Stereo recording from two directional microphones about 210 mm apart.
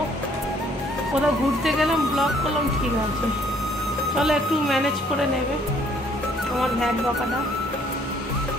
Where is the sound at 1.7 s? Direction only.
Centre (ahead or behind).